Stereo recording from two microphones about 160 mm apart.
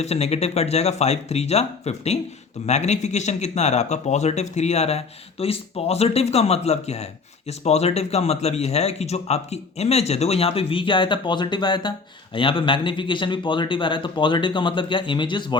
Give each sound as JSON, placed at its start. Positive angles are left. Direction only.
{"t": 0.0, "sound": "speech", "side_deg": 40}